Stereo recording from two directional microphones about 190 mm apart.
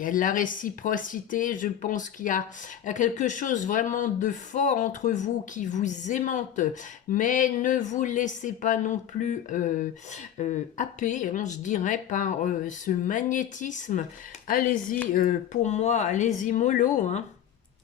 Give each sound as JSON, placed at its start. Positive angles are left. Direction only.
{"t": 0.0, "sound": "speech", "side_deg": 45}